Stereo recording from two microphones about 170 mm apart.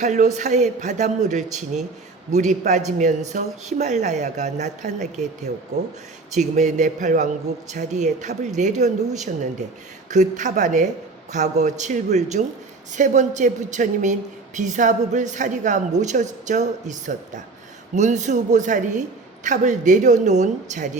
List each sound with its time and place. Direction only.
0.0 s a woman's voice: 45° right (ahead or behind)